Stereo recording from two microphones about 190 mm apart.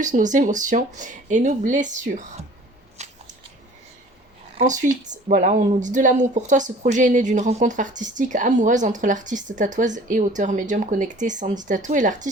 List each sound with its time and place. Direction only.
0.0 s speech: 40° right (ahead or behind)
3.0 s a sound: 35° right (ahead or behind)
4.5 s speech: 40° right (ahead or behind)